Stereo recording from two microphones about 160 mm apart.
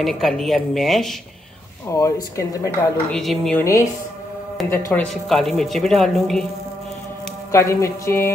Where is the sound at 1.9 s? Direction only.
20° left (ahead or behind).